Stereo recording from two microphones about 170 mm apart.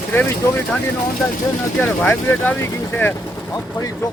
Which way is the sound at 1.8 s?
10° left (ahead or behind).